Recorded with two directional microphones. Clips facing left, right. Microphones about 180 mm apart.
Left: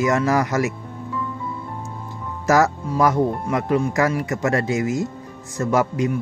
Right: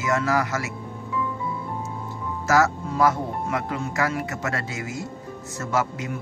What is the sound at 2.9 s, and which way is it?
Speech, 15° left (ahead or behind).